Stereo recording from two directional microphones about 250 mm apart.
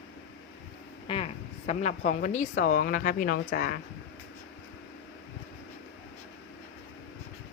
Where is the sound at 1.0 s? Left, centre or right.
Left.